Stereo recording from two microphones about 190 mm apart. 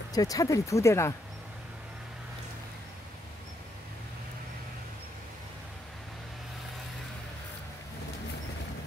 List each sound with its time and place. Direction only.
0.1 s speech: 20° left (ahead or behind)